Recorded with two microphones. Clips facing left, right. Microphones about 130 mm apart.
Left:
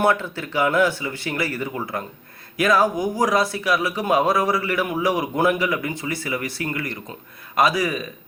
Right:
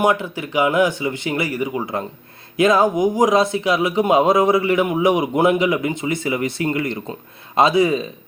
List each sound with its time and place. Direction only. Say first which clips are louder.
0.0 s speech: right 2 dB; 15° right (ahead or behind)